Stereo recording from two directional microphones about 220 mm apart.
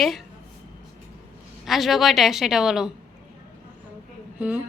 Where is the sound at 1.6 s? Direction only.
Centre (ahead or behind).